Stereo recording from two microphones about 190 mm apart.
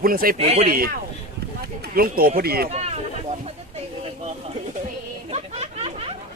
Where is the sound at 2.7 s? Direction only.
35° right (ahead or behind).